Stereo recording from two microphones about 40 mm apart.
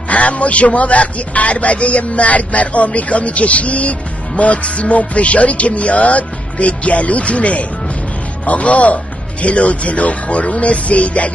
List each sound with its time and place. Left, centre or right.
0.1 s a man's voice: left